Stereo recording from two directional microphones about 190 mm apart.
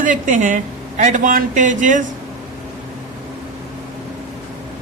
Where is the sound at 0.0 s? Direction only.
45° right (ahead or behind).